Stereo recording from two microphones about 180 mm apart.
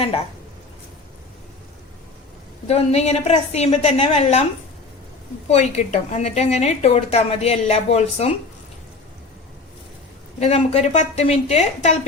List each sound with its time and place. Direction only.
2.6 s a woman's voice: 35° left (ahead or behind)
5.5 s a woman's voice: 35° left (ahead or behind)
10.4 s a woman's voice: 35° left (ahead or behind)